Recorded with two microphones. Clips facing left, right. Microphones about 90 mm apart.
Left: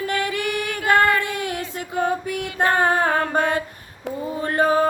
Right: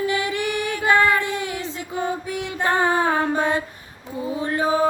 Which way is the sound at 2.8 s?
50° left (ahead or behind).